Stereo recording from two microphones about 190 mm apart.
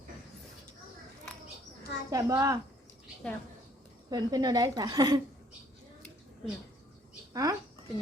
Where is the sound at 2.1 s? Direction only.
20° right (ahead or behind).